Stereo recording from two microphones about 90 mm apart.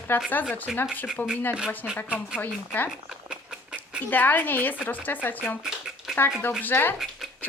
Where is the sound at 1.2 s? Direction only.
20° left (ahead or behind).